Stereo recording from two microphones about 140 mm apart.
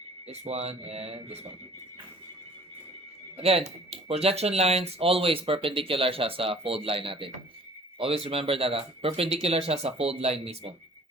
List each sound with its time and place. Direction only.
0.3 s speech: 50° right (ahead or behind)
3.3 s speech: 45° right (ahead or behind)